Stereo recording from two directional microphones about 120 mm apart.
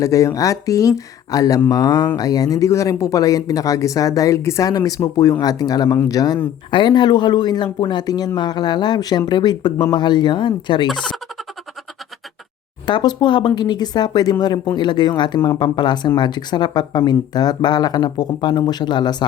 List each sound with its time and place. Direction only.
0.0 s speech: 25° left (ahead or behind)
10.8 s speech: 5° left (ahead or behind)
12.8 s speech: 40° left (ahead or behind)